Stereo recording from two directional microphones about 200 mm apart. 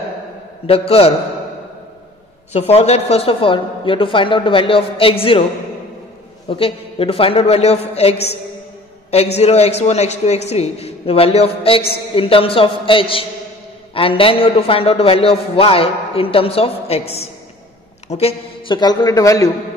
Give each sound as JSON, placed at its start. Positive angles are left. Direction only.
{"t": 0.7, "sound": "a man's voice", "side_deg": 30}
{"t": 2.5, "sound": "a man's voice", "side_deg": 30}
{"t": 6.5, "sound": "a man's voice", "side_deg": 30}
{"t": 9.4, "sound": "a man's voice", "side_deg": 30}